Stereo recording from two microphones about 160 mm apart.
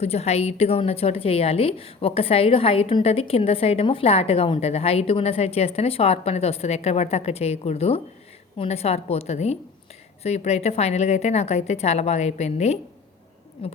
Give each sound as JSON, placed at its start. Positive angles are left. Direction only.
{"t": 0.0, "sound": "a woman's voice", "side_deg": 40}